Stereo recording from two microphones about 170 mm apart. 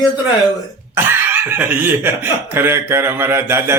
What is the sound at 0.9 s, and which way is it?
Speech, 15° right (ahead or behind).